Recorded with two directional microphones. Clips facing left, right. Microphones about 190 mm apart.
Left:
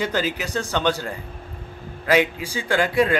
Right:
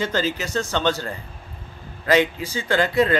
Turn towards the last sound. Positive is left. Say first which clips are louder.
# even
turn(degrees=10)  # may be behind; listen again after turning